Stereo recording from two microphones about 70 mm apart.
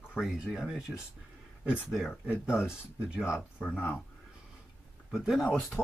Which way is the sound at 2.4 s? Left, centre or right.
Centre.